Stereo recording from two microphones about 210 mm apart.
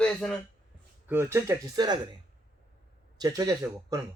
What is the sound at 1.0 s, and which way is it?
Speech, 10° right (ahead or behind).